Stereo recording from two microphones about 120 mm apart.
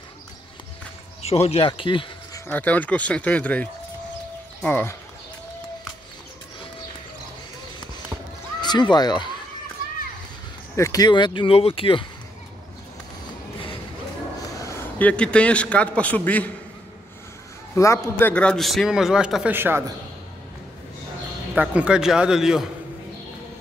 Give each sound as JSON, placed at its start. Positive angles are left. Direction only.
{"t": 1.2, "sound": "speech", "side_deg": 60}
{"t": 1.7, "sound": "speech", "side_deg": 45}
{"t": 2.5, "sound": "speech", "side_deg": 15}
{"t": 8.5, "sound": "speech", "side_deg": 40}
{"t": 10.8, "sound": "speech", "side_deg": 30}
{"t": 15.0, "sound": "speech", "side_deg": 10}
{"t": 17.7, "sound": "a man's voice", "side_deg": 25}
{"t": 18.3, "sound": "a man's voice", "side_deg": 10}
{"t": 21.5, "sound": "a man's voice", "side_deg": -10}